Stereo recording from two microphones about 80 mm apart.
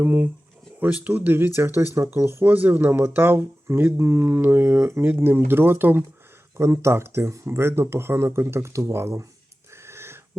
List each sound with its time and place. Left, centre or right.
0.0 s speech: centre; by 9.2 s right
9.8 s owl: right